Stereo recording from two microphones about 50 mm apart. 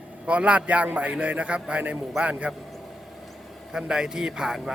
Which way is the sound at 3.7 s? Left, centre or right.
Centre.